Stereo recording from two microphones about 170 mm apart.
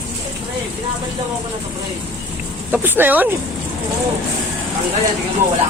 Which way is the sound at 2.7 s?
10° right (ahead or behind).